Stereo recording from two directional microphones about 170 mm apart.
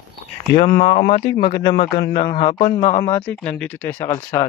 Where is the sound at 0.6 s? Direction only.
60° left (ahead or behind).